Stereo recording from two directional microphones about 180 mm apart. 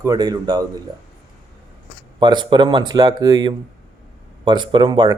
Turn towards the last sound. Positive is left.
turn(degrees=-25)  # may be behind; listen again after turning